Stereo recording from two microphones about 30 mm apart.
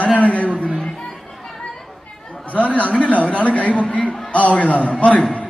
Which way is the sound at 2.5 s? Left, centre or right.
Left.